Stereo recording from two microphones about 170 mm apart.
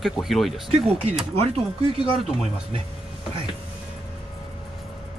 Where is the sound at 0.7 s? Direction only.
40° right (ahead or behind).